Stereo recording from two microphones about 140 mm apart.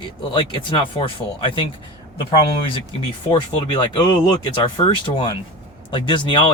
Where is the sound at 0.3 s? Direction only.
35° left (ahead or behind).